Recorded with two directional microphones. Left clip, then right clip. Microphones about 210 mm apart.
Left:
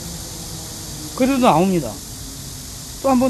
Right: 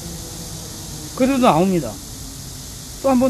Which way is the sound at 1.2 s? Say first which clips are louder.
Even; centre (ahead or behind).